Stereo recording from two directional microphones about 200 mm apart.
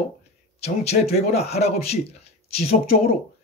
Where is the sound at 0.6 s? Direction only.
30° left (ahead or behind).